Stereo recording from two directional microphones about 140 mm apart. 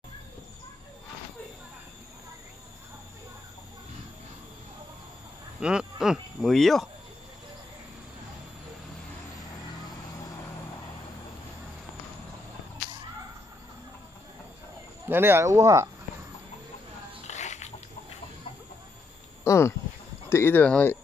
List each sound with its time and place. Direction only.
5.6 s speech: 5° right (ahead or behind)
15.0 s speech: 15° right (ahead or behind)
17.3 s music: 55° left (ahead or behind)
19.4 s a sound: 20° left (ahead or behind)
20.2 s speech: 15° left (ahead or behind)